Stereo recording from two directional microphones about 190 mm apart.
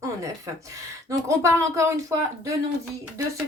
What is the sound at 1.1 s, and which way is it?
Speech, 15° right (ahead or behind).